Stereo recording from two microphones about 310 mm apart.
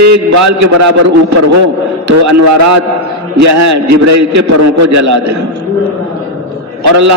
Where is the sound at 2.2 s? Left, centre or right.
Right.